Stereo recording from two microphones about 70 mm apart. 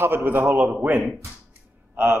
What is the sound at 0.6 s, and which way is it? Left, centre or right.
Speech, centre.